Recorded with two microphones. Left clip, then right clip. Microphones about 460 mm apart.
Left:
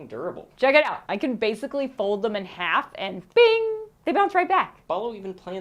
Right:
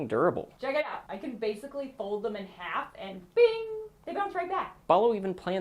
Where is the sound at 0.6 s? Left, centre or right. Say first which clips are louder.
Left 13 dB; left.